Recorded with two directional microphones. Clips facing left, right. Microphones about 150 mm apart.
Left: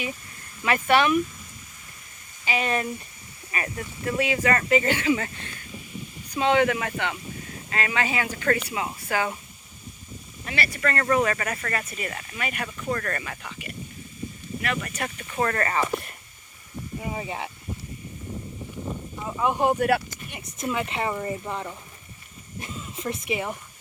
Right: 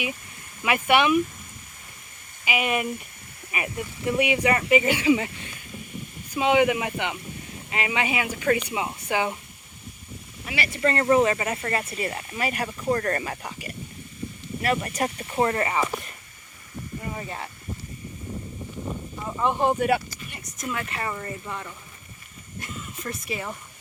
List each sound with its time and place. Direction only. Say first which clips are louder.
0.6 s speech: even; 10° right (ahead or behind)
2.4 s speech: even; 10° right (ahead or behind)
6.3 s speech: right 1 dB; 10° right (ahead or behind)
10.4 s speech: left 1 dB; 10° right (ahead or behind)
10.7 s speech: right 4 dB; 25° right (ahead or behind)
15.4 s speech: right 1 dB; 15° right (ahead or behind)
17.0 s speech: left 3 dB; 15° left (ahead or behind)
19.2 s speech: even; 5° left (ahead or behind)
20.3 s a woman's voice: left 4 dB; 20° left (ahead or behind)
22.6 s speech: left 3 dB; 25° left (ahead or behind)